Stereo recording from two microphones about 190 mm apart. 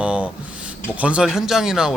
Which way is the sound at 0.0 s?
5° right (ahead or behind).